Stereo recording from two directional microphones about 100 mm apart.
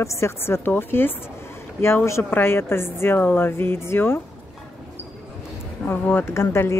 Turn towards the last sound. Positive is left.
turn(degrees=25)  # may be behind; listen again after turning